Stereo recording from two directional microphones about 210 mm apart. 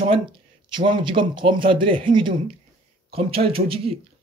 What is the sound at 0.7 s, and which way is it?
Speech, 25° right (ahead or behind).